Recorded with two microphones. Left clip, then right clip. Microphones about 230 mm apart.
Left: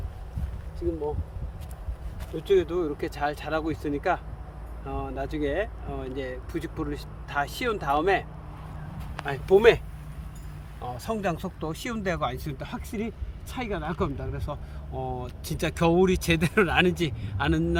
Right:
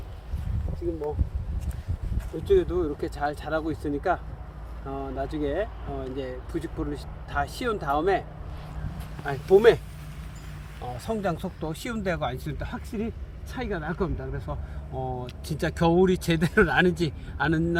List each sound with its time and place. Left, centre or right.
2.5 s speech: centre
9.2 s speech: centre
10.8 s speech: centre